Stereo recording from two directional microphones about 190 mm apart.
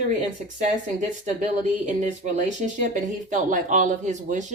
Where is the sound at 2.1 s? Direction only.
40° right (ahead or behind).